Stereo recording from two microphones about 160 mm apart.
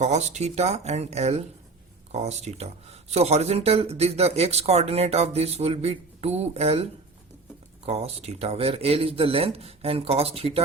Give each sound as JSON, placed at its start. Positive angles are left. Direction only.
{"t": 0.0, "sound": "speech", "side_deg": -45}
{"t": 7.9, "sound": "speech", "side_deg": -40}